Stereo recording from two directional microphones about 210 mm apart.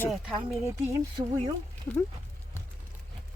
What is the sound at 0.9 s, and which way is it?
Speech, 20° right (ahead or behind).